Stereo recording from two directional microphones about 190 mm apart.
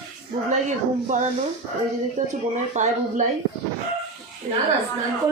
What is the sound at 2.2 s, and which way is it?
Speech, 40° right (ahead or behind).